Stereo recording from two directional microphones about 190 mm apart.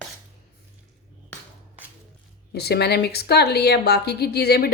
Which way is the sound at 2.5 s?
60° left (ahead or behind).